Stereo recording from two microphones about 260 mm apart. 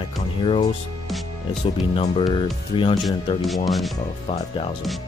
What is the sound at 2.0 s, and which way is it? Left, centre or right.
Speech, centre.